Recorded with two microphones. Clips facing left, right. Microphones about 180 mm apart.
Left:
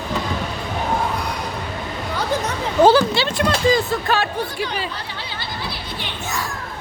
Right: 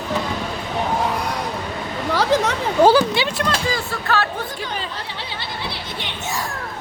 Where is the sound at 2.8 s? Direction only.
15° right (ahead or behind).